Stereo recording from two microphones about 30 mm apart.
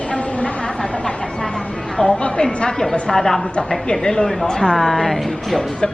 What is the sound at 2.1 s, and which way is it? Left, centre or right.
Speech, left.